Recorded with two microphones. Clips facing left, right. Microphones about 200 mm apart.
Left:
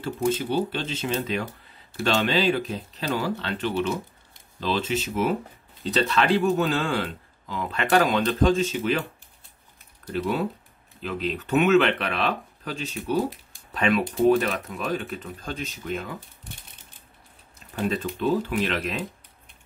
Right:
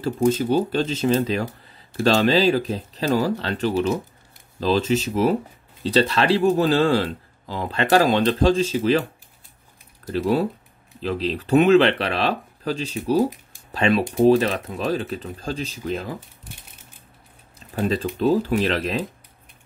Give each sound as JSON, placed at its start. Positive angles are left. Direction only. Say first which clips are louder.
{"t": 0.0, "sound": "speech", "louder": "right 5 dB", "side_deg": -40}
{"t": 10.0, "sound": "speech", "louder": "right 5 dB", "side_deg": -40}
{"t": 17.8, "sound": "speech", "louder": "right 4 dB", "side_deg": -35}